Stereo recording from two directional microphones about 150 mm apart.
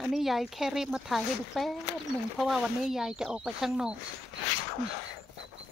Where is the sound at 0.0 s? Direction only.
Centre (ahead or behind).